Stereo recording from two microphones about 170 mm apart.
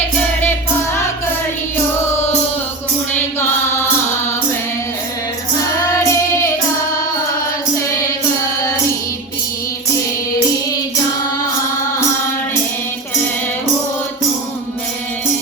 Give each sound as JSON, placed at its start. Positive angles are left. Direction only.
{"t": 3.1, "sound": "chant", "side_deg": 15}
{"t": 5.5, "sound": "child singing", "side_deg": 15}